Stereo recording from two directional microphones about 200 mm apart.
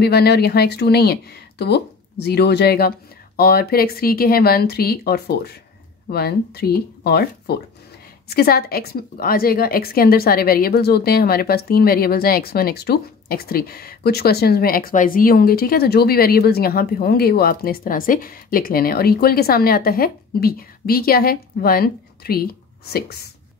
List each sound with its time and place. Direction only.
0.0 s a woman's voice: 55° left (ahead or behind)